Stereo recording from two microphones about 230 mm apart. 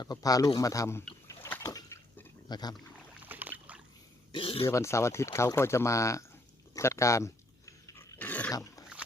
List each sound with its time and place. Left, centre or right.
0.0 s a sound: centre
3.2 s rowboat: centre
4.3 s speech: left
4.7 s speech: centre
6.7 s dog: centre